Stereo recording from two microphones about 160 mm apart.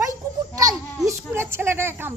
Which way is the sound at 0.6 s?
20° right (ahead or behind).